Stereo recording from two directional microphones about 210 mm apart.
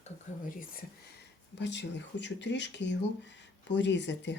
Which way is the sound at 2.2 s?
60° left (ahead or behind).